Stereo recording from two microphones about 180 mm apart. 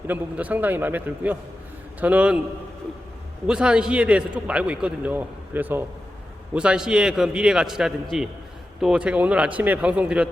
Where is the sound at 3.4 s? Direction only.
5° right (ahead or behind).